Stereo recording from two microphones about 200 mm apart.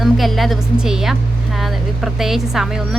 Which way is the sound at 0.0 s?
Centre (ahead or behind).